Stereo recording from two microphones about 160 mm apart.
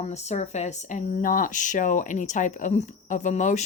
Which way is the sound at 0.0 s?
45° left (ahead or behind).